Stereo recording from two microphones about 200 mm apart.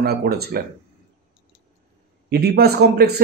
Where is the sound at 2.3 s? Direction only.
55° right (ahead or behind).